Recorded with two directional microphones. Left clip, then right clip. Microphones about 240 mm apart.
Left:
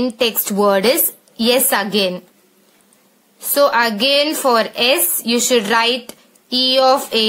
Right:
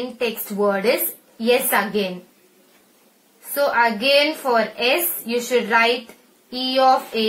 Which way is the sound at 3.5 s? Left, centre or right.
Left.